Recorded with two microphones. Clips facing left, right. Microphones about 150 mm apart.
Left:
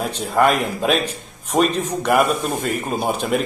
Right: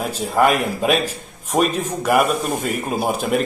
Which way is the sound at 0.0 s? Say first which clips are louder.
Even; centre (ahead or behind).